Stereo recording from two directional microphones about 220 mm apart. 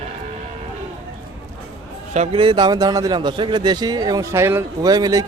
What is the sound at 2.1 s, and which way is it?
A man's voice, 30° right (ahead or behind).